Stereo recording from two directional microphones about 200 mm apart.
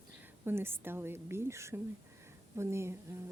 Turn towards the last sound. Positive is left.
turn(degrees=-15)  # may be behind; listen again after turning